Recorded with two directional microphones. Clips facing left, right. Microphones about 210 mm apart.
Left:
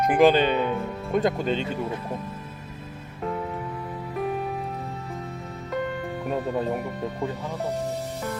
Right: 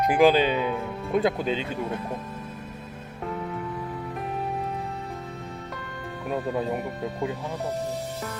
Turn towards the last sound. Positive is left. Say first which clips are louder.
# even
turn(degrees=0)  # may be behind; listen again after turning